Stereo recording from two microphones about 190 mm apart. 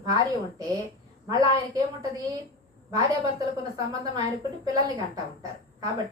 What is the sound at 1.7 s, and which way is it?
A woman's voice, 20° right (ahead or behind).